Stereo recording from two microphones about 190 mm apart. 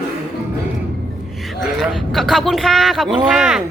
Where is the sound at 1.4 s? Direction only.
Centre (ahead or behind).